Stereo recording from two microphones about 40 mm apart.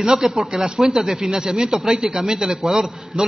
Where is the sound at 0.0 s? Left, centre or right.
Centre.